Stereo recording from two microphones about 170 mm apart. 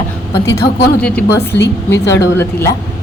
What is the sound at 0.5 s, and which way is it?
A woman's voice, 10° left (ahead or behind).